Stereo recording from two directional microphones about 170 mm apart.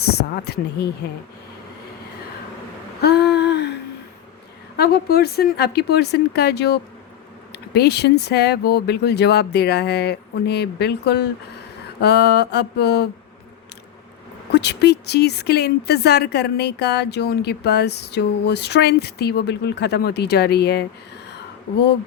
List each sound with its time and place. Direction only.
0.1 s speech: 70° left (ahead or behind)
3.0 s a sound: 70° left (ahead or behind)
4.8 s speech: 70° left (ahead or behind)
14.5 s speech: 80° left